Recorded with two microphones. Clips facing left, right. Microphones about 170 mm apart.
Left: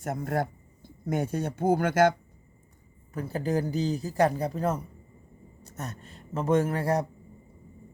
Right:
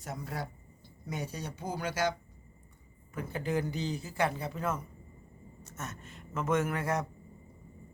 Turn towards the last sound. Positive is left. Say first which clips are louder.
# left 6 dB
turn(degrees=35)  # may be behind; listen again after turning